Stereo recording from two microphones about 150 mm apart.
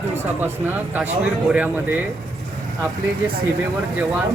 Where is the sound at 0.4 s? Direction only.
10° right (ahead or behind).